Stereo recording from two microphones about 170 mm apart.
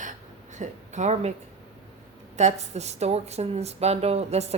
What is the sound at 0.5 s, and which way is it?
Speech, 45° right (ahead or behind).